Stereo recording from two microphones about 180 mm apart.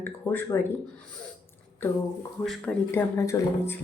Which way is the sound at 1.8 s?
10° left (ahead or behind).